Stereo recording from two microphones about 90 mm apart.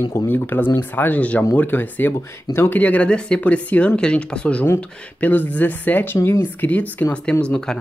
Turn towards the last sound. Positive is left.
turn(degrees=10)  # may be behind; listen again after turning